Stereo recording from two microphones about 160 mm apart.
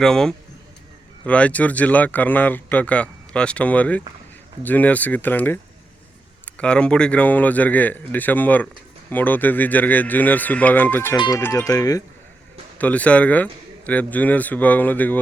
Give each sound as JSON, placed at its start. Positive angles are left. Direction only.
{"t": 0.0, "sound": "speech", "side_deg": 5}
{"t": 6.6, "sound": "speech", "side_deg": 5}
{"t": 12.8, "sound": "speech", "side_deg": 10}